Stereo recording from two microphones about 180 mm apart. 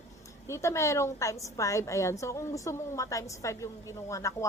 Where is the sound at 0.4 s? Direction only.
15° left (ahead or behind).